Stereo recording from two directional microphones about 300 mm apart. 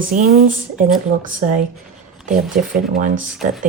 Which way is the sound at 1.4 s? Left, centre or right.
Right.